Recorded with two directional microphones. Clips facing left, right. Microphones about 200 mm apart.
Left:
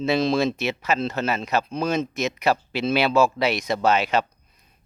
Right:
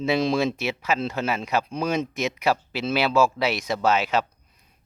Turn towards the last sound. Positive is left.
turn(degrees=-5)  # may be behind; listen again after turning